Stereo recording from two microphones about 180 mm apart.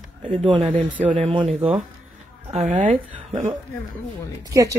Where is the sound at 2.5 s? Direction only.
40° right (ahead or behind).